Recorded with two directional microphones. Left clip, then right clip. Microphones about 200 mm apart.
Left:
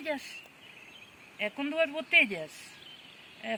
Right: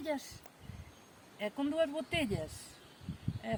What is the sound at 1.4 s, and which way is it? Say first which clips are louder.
Speech: left 4 dB; centre (ahead or behind).